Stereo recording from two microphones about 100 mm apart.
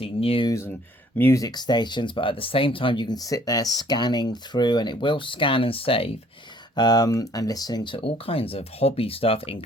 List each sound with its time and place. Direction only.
0.0 s speech: 70° left (ahead or behind)
0.7 s speech: 20° left (ahead or behind)
1.3 s speech: 40° left (ahead or behind); by 6.1 s 65° left (ahead or behind)
6.7 s speech: 40° left (ahead or behind)
7.9 s speech: 65° left (ahead or behind)